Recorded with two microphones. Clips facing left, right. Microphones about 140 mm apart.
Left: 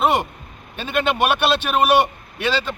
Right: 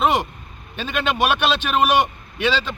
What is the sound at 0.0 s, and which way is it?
Vehicle, 10° left (ahead or behind).